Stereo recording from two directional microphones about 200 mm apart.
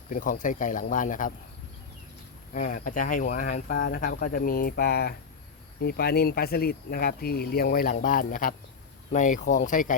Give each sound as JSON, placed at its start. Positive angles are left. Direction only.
{"t": 0.1, "sound": "speech", "side_deg": 40}
{"t": 2.5, "sound": "speech", "side_deg": 40}